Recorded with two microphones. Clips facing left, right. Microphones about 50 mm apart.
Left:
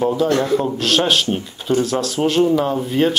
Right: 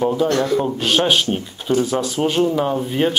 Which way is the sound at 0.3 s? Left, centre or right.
Centre.